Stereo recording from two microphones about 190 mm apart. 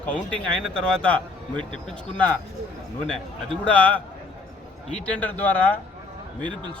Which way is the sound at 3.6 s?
5° left (ahead or behind).